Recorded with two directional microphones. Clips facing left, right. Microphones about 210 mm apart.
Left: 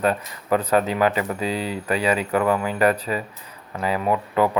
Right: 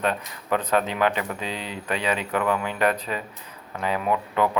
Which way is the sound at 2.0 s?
5° left (ahead or behind).